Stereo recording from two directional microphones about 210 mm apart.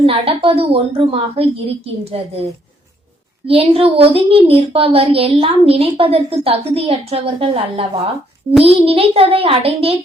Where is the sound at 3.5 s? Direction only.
25° right (ahead or behind).